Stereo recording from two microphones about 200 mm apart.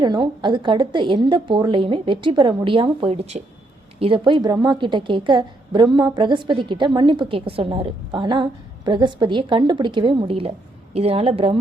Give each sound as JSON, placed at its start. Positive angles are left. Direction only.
{"t": 0.0, "sound": "a woman's voice", "side_deg": -20}